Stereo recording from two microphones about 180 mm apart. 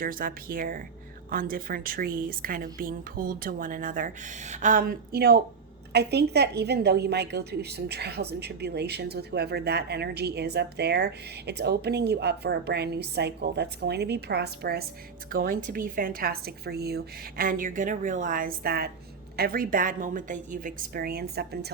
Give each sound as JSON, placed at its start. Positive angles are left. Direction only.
{"t": 0.0, "sound": "a woman's voice", "side_deg": -50}